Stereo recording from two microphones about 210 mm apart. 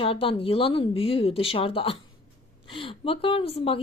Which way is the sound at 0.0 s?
25° left (ahead or behind).